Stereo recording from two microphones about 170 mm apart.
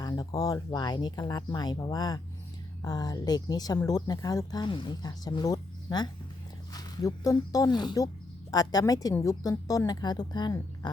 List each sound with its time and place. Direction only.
0.0 s speech: 20° left (ahead or behind)